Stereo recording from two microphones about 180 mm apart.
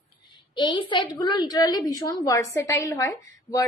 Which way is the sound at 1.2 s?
25° left (ahead or behind).